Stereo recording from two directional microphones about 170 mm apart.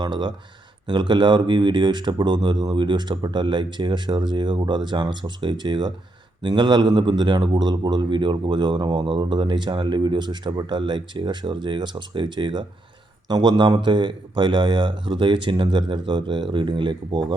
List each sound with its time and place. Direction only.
0.0 s a man's voice: 25° right (ahead or behind)